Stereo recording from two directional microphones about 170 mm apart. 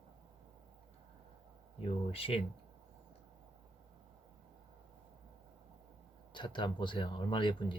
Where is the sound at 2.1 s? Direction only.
35° left (ahead or behind).